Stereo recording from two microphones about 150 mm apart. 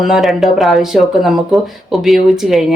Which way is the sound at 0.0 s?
Centre (ahead or behind).